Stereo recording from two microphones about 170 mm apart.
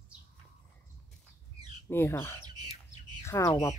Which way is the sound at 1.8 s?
15° left (ahead or behind).